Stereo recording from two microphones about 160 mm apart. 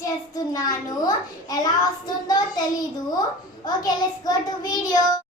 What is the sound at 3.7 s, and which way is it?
A child's voice, 25° left (ahead or behind).